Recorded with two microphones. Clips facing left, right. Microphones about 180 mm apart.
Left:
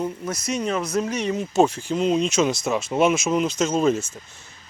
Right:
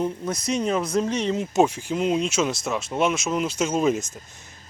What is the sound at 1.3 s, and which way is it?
Speech, 20° right (ahead or behind).